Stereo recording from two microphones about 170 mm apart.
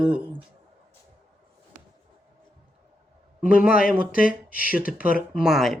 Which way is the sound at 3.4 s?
10° right (ahead or behind).